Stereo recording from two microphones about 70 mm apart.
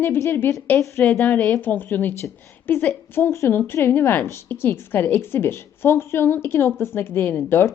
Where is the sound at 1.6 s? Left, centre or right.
Left.